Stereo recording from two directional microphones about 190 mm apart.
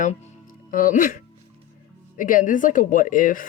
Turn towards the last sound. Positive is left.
turn(degrees=45)  # may be behind; listen again after turning